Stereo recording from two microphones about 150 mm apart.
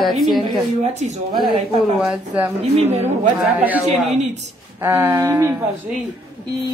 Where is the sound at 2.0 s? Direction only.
10° right (ahead or behind).